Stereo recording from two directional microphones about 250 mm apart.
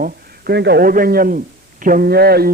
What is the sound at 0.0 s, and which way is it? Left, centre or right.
Speech, right.